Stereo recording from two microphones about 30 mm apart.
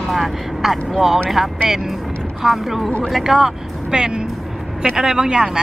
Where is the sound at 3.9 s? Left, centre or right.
Right.